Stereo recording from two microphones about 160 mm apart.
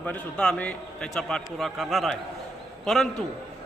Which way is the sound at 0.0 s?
5° left (ahead or behind).